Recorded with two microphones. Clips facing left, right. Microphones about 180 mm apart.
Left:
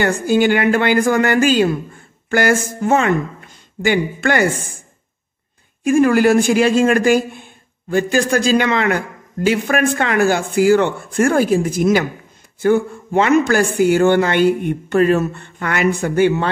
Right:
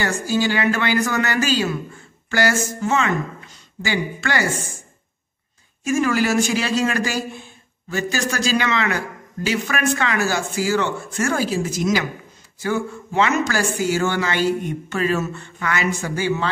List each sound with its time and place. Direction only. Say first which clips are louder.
0.0 s speech: left 6 dB; 55° left (ahead or behind)
2.0 s a sound: left 2 dB; 50° left (ahead or behind)
2.6 s speech: left 5 dB; 55° left (ahead or behind)
5.9 s speech: left 7 dB; 55° left (ahead or behind)